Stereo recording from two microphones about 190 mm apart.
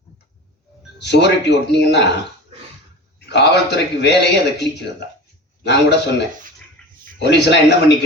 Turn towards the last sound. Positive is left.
turn(degrees=60)  # may be behind; listen again after turning